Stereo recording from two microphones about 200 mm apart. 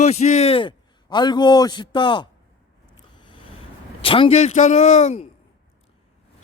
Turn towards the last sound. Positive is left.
turn(degrees=35)  # may be behind; listen again after turning